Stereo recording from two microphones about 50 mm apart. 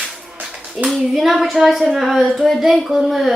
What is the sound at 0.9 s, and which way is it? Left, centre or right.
Child singing, centre.